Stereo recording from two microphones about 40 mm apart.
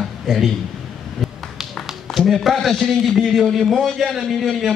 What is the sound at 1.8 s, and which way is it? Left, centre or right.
Tap, centre.